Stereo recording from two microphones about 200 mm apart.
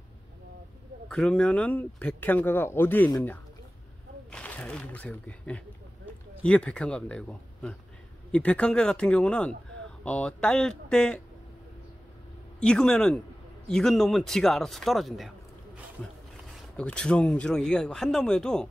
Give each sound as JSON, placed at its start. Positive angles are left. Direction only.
{"t": 1.1, "sound": "speech", "side_deg": 5}
{"t": 12.5, "sound": "speech", "side_deg": 5}
{"t": 16.7, "sound": "speech", "side_deg": 5}